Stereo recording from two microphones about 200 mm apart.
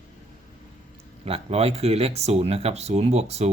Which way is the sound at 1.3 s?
30° right (ahead or behind).